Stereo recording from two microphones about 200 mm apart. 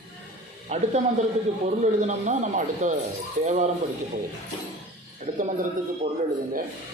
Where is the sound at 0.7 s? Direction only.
35° right (ahead or behind).